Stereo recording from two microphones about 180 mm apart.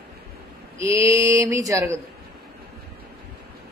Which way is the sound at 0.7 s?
15° right (ahead or behind).